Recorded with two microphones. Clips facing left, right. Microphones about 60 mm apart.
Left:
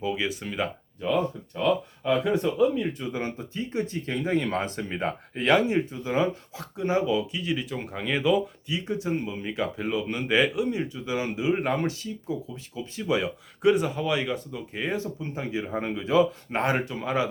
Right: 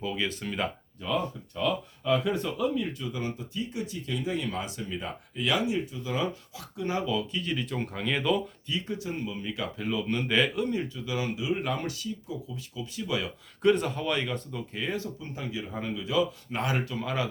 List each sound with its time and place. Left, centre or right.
0.0 s speech: centre
1.0 s speech: left; by 8.8 s centre
8.9 s speech: left
13.6 s speech: centre
14.7 s speech: left
16.8 s speech: left